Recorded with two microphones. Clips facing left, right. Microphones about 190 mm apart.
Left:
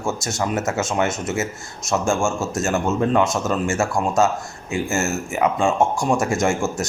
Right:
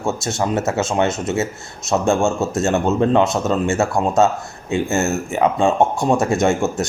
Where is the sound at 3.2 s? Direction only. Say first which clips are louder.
Right 3 dB; 60° right (ahead or behind).